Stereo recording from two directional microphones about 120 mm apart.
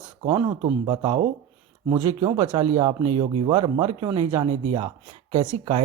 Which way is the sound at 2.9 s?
55° right (ahead or behind).